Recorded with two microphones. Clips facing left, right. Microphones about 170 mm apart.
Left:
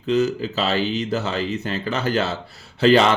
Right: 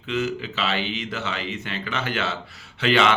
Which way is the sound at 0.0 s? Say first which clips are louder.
Left 6 dB; 40° left (ahead or behind).